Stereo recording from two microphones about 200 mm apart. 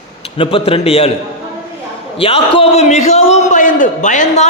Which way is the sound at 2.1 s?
30° left (ahead or behind).